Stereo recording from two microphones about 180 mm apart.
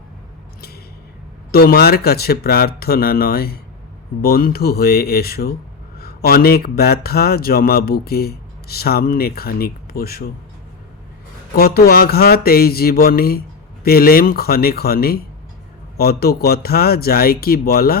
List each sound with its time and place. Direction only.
1.5 s a man's voice: 60° left (ahead or behind)
11.5 s a man's voice: 60° left (ahead or behind)